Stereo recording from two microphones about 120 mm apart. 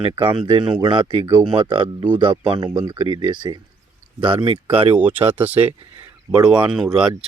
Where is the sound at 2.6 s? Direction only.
35° right (ahead or behind); by 4.9 s 50° right (ahead or behind).